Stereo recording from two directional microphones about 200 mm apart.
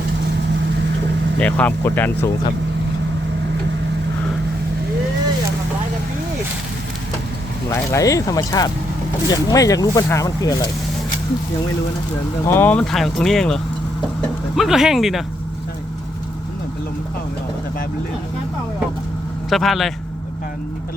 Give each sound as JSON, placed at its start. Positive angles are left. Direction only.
{"t": 1.4, "sound": "speech", "side_deg": 5}
{"t": 7.7, "sound": "speech", "side_deg": 15}
{"t": 12.5, "sound": "speech", "side_deg": 10}
{"t": 19.5, "sound": "speech", "side_deg": 0}